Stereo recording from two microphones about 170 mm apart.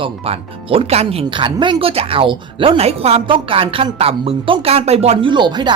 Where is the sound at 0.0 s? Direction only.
35° right (ahead or behind).